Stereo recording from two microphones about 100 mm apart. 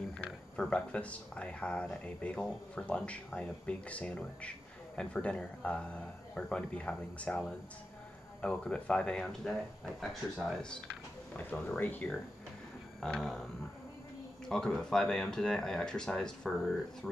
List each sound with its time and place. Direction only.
0.2 s speech: 10° left (ahead or behind)
11.3 s speech: 20° left (ahead or behind)
13.0 s speech: 5° left (ahead or behind)